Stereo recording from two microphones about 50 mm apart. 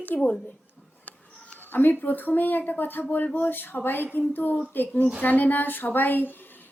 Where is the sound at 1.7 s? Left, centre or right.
Left.